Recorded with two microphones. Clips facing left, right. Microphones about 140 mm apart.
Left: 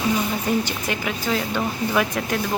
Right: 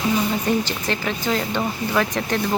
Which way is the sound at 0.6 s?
10° left (ahead or behind).